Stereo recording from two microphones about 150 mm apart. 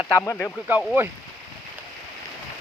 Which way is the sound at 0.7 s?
10° right (ahead or behind).